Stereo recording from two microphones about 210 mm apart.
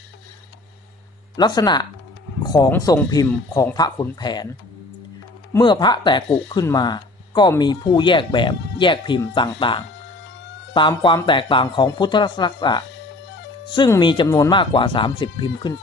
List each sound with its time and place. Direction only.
1.4 s speech: 20° left (ahead or behind)
5.5 s speech: 20° left (ahead or behind)